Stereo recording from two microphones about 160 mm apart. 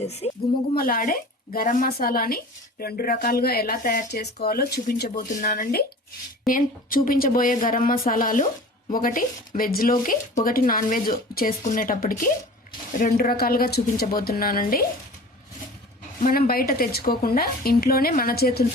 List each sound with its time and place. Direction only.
0.0 s speech: 40° left (ahead or behind)
0.8 s speech: 60° left (ahead or behind)
5.3 s speech: 55° left (ahead or behind)
16.2 s speech: 65° left (ahead or behind)